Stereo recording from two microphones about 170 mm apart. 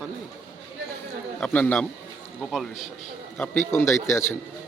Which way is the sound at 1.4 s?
10° left (ahead or behind).